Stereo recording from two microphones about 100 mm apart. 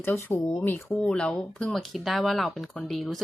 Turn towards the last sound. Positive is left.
turn(degrees=0)  # may be behind; listen again after turning